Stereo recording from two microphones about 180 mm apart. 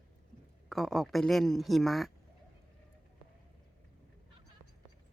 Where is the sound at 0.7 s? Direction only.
Centre (ahead or behind).